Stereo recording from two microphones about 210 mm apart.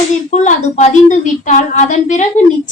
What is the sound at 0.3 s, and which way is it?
A woman's voice, 35° left (ahead or behind).